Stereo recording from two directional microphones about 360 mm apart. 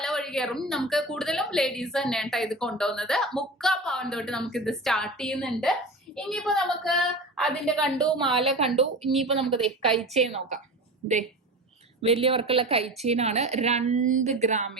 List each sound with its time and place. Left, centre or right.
0.0 s a woman's voice: centre
8.4 s a woman's voice: centre
9.4 s a woman's voice: centre
12.0 s a woman's voice: centre